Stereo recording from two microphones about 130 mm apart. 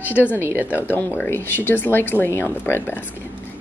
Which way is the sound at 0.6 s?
15° left (ahead or behind).